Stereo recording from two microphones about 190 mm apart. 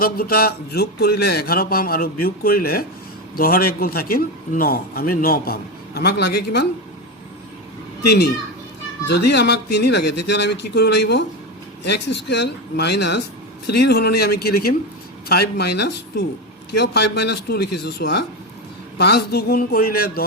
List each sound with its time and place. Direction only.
0.0 s a man's voice: 50° left (ahead or behind)
9.0 s a man's voice: 60° left (ahead or behind)